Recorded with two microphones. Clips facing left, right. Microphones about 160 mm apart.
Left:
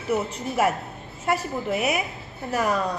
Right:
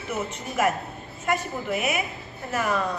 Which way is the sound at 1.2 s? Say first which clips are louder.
Left 2 dB; 35° left (ahead or behind).